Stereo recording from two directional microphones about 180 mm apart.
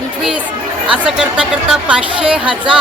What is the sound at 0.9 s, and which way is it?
Speech, 5° right (ahead or behind).